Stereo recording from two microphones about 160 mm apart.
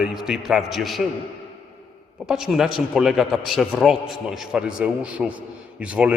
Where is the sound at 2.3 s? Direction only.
5° right (ahead or behind).